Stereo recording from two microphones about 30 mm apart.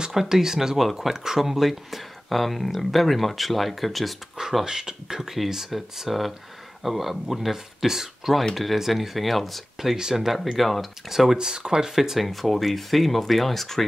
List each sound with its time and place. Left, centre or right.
0.2 s speech: centre
4.6 s speech: right; by 9.6 s centre
9.8 s speech: centre
10.1 s speech: centre
11.1 s speech: centre
11.3 s speech: right
12.0 s speech: centre
12.3 s speech: centre